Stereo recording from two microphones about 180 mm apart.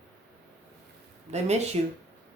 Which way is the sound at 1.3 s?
40° right (ahead or behind).